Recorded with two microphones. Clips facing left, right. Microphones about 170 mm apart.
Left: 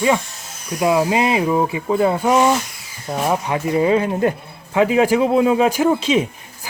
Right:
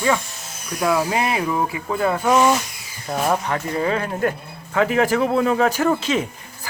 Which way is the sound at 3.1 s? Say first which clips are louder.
Left 1 dB; 5° left (ahead or behind).